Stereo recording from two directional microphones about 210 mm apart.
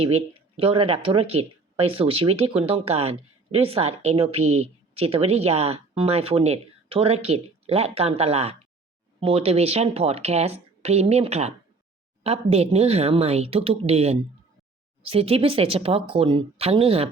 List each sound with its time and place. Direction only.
0.0 s speech: 30° right (ahead or behind)